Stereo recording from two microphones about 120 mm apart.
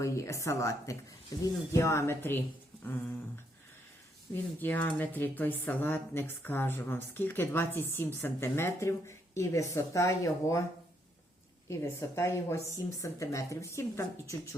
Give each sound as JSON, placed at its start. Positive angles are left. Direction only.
{"t": 0.0, "sound": "speech", "side_deg": 25}
{"t": 4.6, "sound": "speech", "side_deg": 15}
{"t": 11.7, "sound": "speech", "side_deg": 20}